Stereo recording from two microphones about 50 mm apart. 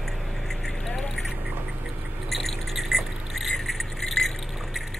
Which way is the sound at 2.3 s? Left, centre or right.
Centre.